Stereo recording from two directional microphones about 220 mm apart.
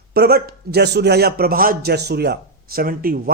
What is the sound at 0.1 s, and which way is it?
A man's voice, 45° right (ahead or behind).